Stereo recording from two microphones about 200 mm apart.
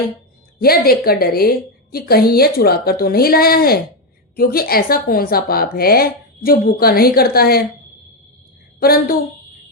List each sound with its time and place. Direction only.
0.6 s a woman's voice: 50° left (ahead or behind)
8.8 s a woman's voice: 50° left (ahead or behind)